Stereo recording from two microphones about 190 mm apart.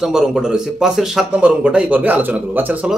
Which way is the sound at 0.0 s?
Centre (ahead or behind).